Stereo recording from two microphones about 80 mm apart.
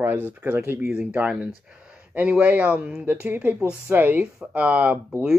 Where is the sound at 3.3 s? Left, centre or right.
Right.